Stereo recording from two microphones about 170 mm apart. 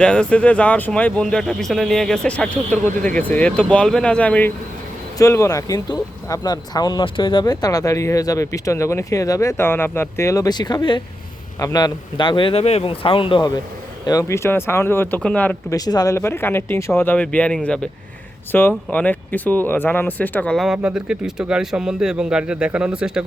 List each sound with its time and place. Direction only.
0.0 s speech: 5° left (ahead or behind)
15.7 s speech: 20° left (ahead or behind); by 23.2 s 5° right (ahead or behind)